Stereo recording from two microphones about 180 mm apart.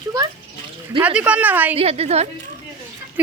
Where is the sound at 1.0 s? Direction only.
5° right (ahead or behind).